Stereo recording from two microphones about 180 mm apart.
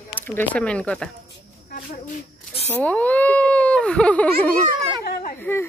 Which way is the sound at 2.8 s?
10° left (ahead or behind).